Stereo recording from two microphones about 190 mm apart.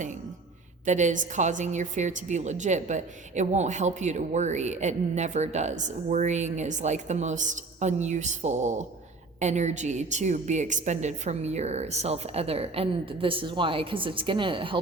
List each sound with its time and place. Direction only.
0.9 s a woman's voice: 40° right (ahead or behind)